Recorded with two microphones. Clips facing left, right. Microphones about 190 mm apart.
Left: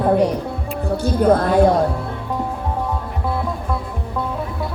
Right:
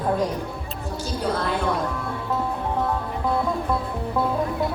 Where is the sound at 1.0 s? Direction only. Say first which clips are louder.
Left 10 dB; 50° left (ahead or behind).